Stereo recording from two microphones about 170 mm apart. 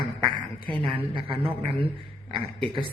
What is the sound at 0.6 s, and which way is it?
Speech, 30° right (ahead or behind).